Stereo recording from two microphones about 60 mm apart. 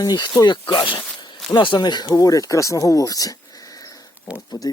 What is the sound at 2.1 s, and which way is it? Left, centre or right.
Speech, left.